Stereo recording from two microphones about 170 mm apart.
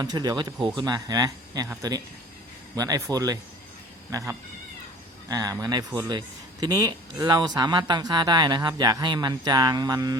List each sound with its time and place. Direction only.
0.0 s speech: 25° right (ahead or behind)
2.7 s speech: 20° right (ahead or behind)
5.3 s speech: 20° right (ahead or behind)